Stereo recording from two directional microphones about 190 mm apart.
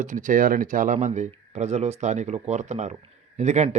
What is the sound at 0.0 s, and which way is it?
Speech, 40° right (ahead or behind).